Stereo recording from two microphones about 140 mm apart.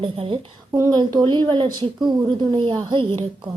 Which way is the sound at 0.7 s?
30° right (ahead or behind).